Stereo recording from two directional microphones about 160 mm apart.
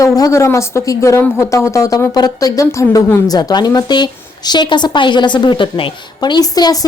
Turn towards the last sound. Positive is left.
turn(degrees=25)  # may be behind; listen again after turning